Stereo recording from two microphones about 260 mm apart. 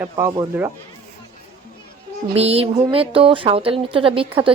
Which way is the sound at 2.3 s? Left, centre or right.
Right.